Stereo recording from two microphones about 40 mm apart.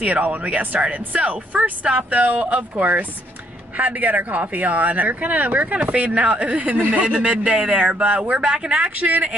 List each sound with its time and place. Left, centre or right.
0.0 s speech: right
5.9 s speech: right
8.4 s speech: right